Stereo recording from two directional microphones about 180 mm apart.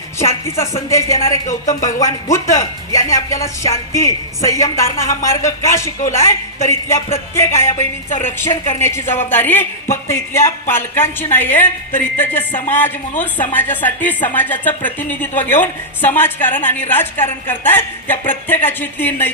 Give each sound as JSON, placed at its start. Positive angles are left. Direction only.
{"t": 0.2, "sound": "speech", "side_deg": 15}